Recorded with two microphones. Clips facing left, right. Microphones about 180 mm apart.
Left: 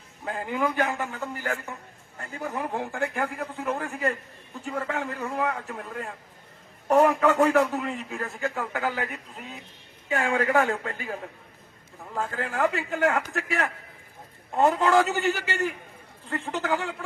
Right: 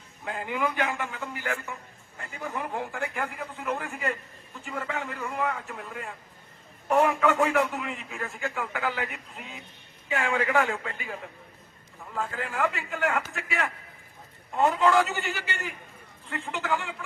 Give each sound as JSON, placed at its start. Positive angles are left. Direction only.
{"t": 0.3, "sound": "a man's voice", "side_deg": 40}
{"t": 12.4, "sound": "a man's voice", "side_deg": 40}